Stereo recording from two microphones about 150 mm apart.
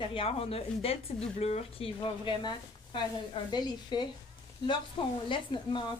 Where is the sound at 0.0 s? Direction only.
35° left (ahead or behind).